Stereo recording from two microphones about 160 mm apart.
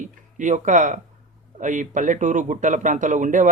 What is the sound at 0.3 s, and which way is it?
A man's voice, 50° right (ahead or behind).